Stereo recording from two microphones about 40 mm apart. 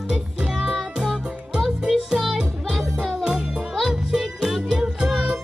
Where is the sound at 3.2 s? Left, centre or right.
Right.